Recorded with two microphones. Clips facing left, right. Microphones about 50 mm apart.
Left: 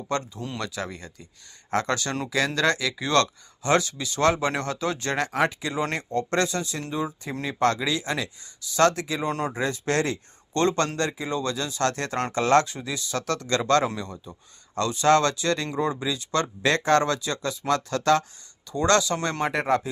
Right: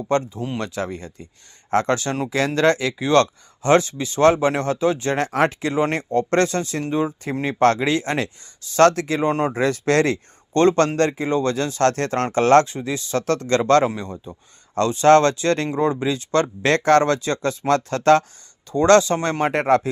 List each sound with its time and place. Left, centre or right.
0.1 s speech: right
0.6 s speech: right
3.0 s speech: right
5.3 s speech: right
5.7 s speech: right
6.1 s speech: right
9.2 s speech: right
9.6 s speech: right
10.5 s speech: right
11.3 s speech: right
12.6 s speech: right
13.8 s speech: right
14.8 s speech: right
19.5 s speech: right